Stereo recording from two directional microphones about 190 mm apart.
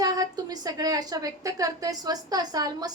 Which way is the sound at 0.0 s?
20° right (ahead or behind).